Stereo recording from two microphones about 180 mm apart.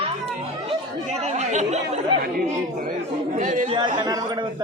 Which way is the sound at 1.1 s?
40° right (ahead or behind).